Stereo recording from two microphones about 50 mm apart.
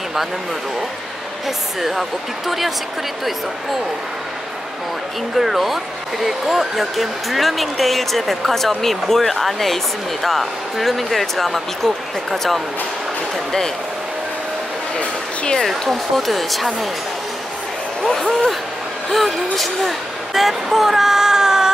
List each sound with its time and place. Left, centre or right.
1.8 s speech: centre
5.3 s speech: centre
15.6 s speech: centre
18.0 s speech: centre
19.1 s speech: centre